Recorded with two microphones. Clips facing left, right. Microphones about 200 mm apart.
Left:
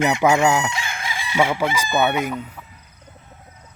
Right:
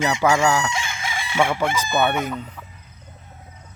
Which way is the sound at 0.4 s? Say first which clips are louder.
Left 1 dB; 20° left (ahead or behind).